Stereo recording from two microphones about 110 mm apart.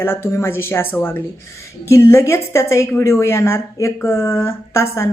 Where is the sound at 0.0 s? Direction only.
20° left (ahead or behind).